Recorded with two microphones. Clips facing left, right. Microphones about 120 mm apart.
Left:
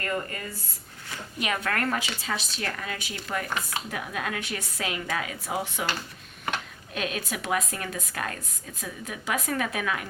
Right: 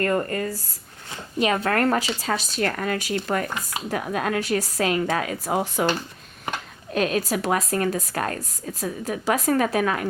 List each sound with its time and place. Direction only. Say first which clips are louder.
0.0 s speech: right 8 dB; 45° right (ahead or behind)
1.1 s speech: right 8 dB; 30° right (ahead or behind)
6.9 s speech: right 9 dB; 40° right (ahead or behind)